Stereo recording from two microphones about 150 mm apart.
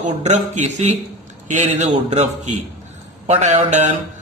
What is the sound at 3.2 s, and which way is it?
Speech, 45° right (ahead or behind).